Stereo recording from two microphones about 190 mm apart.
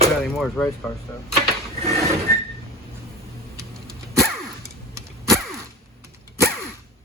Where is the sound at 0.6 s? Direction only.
15° left (ahead or behind).